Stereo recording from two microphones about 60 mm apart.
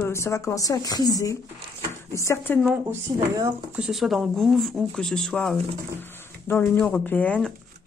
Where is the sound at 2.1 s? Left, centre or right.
Left.